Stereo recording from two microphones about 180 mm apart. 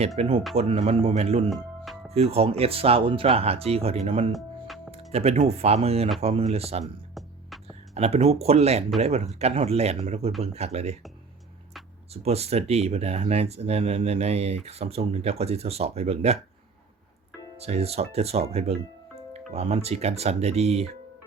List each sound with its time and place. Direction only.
0.2 s speech: 30° right (ahead or behind)
1.5 s music: centre (ahead or behind)
2.3 s speech: 35° right (ahead or behind)
4.3 s music: centre (ahead or behind)
4.9 s music: 35° right (ahead or behind)
5.5 s speech: 35° right (ahead or behind)
7.1 s music: centre (ahead or behind)
7.9 s speech: 35° right (ahead or behind)
12.1 s speech: 35° right (ahead or behind)
17.6 s speech: 35° right (ahead or behind)